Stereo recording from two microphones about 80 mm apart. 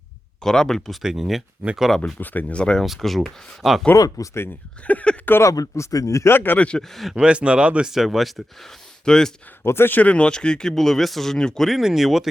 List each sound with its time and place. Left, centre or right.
0.4 s speech: centre
1.0 s speech: centre
2.1 s speech: left
2.8 s speech: centre
3.9 s speech: left
4.9 s speech: centre
5.3 s speech: left
6.3 s speech: left
6.7 s speech: centre
7.2 s speech: centre
9.6 s speech: left
10.0 s speech: centre